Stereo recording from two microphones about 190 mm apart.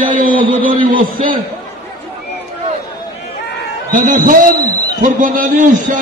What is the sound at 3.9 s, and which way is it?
A man's voice, 45° right (ahead or behind).